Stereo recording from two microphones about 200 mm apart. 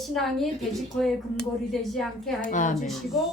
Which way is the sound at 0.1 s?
Centre (ahead or behind).